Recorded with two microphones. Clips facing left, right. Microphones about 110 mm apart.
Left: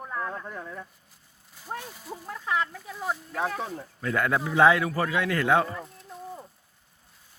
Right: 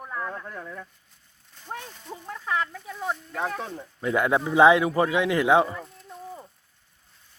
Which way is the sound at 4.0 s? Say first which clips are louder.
Right 3 dB; 20° right (ahead or behind).